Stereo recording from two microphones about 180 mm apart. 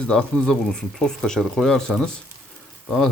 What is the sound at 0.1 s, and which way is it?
Speech, 5° left (ahead or behind).